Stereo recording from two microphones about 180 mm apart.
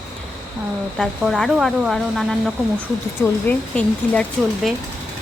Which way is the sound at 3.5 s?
5° left (ahead or behind).